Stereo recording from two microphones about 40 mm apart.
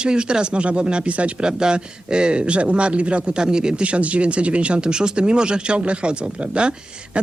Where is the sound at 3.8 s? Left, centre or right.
Right.